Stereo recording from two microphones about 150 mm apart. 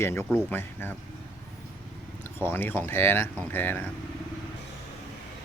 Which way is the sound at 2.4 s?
15° left (ahead or behind).